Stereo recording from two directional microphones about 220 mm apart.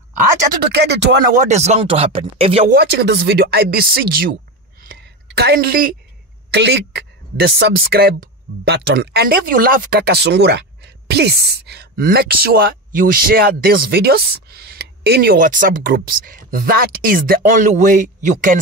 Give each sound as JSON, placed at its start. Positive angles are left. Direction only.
{"t": 0.7, "sound": "speech", "side_deg": -50}
{"t": 1.3, "sound": "speech", "side_deg": -30}
{"t": 2.7, "sound": "speech", "side_deg": -45}